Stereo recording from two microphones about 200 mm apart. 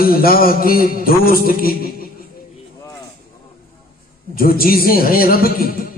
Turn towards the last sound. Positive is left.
turn(degrees=45)  # may be behind; listen again after turning